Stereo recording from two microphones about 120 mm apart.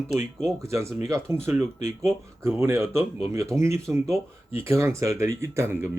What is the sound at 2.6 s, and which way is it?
A man's voice, 20° right (ahead or behind).